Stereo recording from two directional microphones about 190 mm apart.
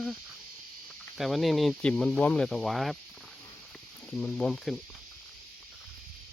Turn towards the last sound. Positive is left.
turn(degrees=5)  # may be behind; listen again after turning